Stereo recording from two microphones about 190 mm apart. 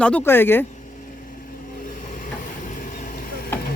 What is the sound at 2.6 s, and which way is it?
Vehicle, 45° left (ahead or behind).